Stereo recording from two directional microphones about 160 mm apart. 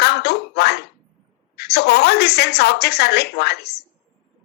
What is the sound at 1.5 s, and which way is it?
A woman's voice, 90° left.